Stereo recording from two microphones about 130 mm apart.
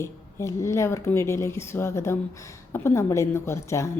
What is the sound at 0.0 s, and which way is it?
A woman's voice, 20° left (ahead or behind).